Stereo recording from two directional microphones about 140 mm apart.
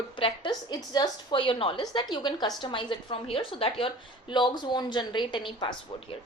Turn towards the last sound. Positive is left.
turn(degrees=35)  # may be behind; listen again after turning